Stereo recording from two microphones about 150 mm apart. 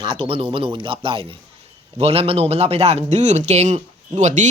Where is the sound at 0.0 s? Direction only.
35° right (ahead or behind).